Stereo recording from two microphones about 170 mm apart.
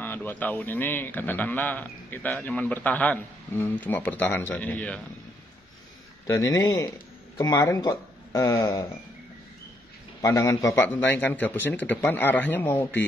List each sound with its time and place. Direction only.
0.0 s a man's voice: 10° left (ahead or behind)
6.2 s speech: 20° left (ahead or behind)
10.2 s a man's voice: 20° left (ahead or behind)